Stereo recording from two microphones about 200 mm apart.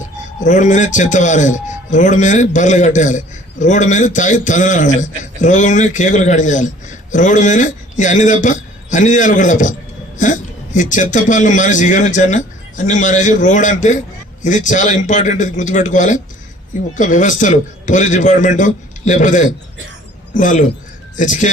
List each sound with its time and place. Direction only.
0.3 s a man's voice: 40° left (ahead or behind)